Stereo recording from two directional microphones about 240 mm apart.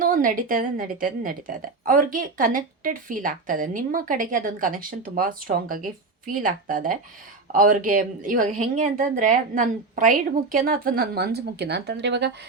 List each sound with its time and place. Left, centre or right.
0.0 s a woman's voice: right